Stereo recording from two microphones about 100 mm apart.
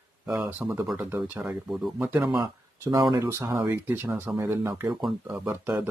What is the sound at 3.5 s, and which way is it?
Speech, 40° right (ahead or behind).